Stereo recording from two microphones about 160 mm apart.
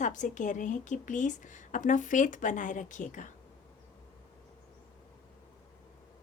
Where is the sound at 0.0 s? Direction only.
50° left (ahead or behind).